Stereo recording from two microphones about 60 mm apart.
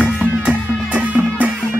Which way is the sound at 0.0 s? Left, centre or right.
Right.